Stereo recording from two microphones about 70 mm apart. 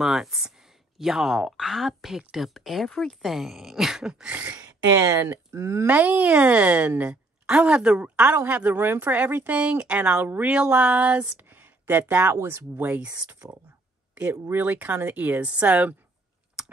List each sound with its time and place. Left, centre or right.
0.0 s speech: centre
4.6 s speech: right
5.2 s speech: right
5.9 s a woman's voice: right
10.2 s speech: right
10.5 s speech: centre
11.4 s a sound: right
12.4 s speech: right; by 15.9 s centre
16.6 s computer keyboard: centre